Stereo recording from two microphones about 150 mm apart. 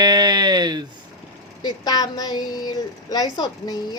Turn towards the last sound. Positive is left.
turn(degrees=25)  # may be behind; listen again after turning